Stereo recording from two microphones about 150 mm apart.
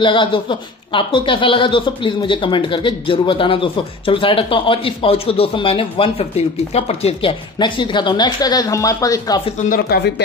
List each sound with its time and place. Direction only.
0.0 s speech: 35° left (ahead or behind)
9.6 s speech: 80° left